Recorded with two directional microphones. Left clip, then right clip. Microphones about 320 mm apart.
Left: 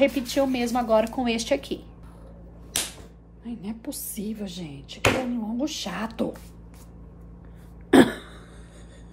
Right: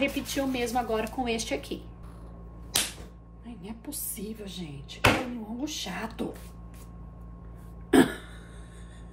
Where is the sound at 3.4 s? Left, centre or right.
Left.